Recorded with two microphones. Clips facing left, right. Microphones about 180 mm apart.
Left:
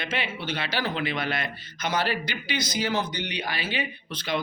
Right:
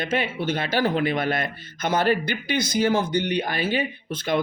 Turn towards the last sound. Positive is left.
turn(degrees=-50)  # may be behind; listen again after turning